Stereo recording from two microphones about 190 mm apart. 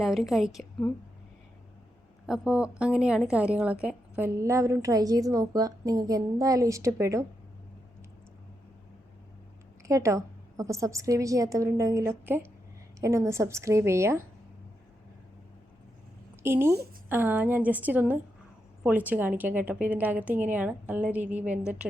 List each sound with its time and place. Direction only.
0.0 s a woman's voice: centre (ahead or behind)
2.2 s a woman's voice: centre (ahead or behind)
9.8 s a woman's voice: 15° right (ahead or behind)
16.4 s a woman's voice: 15° right (ahead or behind)